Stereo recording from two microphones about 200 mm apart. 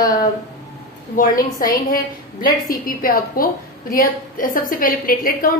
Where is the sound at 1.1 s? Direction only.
45° left (ahead or behind).